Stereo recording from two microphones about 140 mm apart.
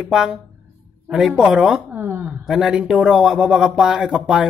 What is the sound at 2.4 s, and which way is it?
Speech, 5° right (ahead or behind).